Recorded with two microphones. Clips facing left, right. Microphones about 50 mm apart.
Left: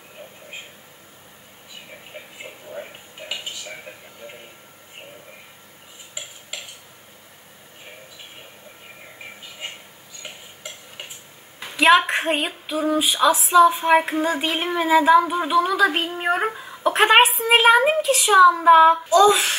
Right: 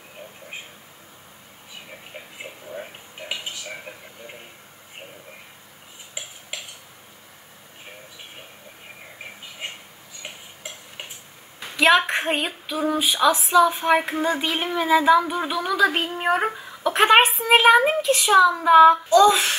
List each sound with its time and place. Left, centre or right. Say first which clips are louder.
2.1 s a sound: even; centre
11.6 s a sound: left 2 dB; centre
13.7 s child singing: left 3 dB; centre
14.9 s speech: left 2 dB; centre
18.6 s child singing: even; centre
19.0 s speech: even; centre